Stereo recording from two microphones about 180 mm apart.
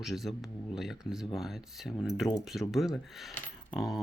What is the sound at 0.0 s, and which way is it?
Speech, centre (ahead or behind).